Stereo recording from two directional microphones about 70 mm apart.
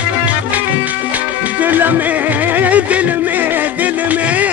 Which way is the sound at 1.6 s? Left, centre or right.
Right.